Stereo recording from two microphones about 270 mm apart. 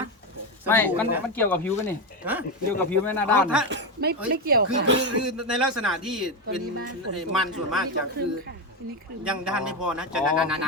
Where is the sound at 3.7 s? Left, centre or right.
Right.